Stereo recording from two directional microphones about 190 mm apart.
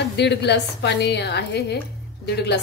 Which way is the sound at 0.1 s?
60° left (ahead or behind).